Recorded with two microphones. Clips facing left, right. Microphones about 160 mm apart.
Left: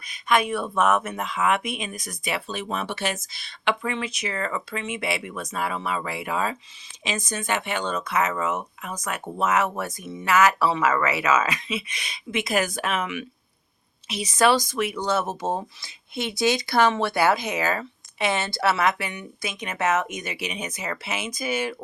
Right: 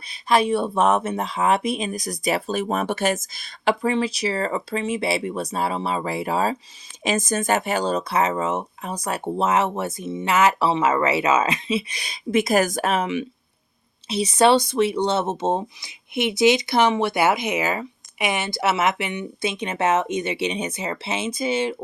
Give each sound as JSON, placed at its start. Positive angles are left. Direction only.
{"t": 0.1, "sound": "speech", "side_deg": -30}
{"t": 7.0, "sound": "speech", "side_deg": -45}